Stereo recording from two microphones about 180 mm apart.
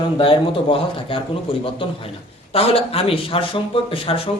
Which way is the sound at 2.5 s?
30° left (ahead or behind).